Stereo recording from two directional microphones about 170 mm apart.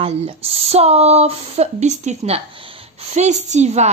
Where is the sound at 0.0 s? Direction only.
35° right (ahead or behind).